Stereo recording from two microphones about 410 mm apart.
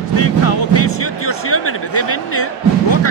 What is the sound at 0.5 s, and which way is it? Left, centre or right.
Speech, left.